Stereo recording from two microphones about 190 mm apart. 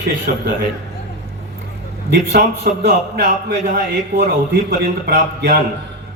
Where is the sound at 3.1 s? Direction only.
50° right (ahead or behind).